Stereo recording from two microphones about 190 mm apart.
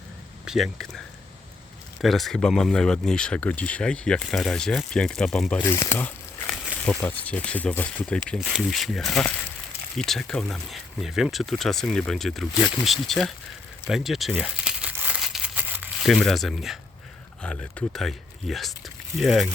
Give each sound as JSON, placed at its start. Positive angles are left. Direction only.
{"t": 0.4, "sound": "a sound", "side_deg": 0}
{"t": 2.0, "sound": "speech", "side_deg": 0}
{"t": 13.8, "sound": "crumpling", "side_deg": 0}
{"t": 16.0, "sound": "speech", "side_deg": 0}